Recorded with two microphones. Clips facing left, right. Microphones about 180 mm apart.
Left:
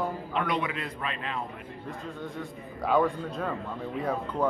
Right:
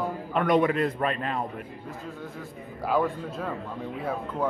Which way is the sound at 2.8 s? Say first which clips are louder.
Left 1 dB; centre (ahead or behind).